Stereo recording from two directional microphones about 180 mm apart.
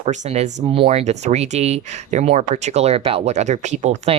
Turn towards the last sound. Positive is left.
turn(degrees=-35)  # may be behind; listen again after turning